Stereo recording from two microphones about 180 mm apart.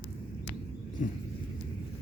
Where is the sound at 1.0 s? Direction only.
45° left (ahead or behind).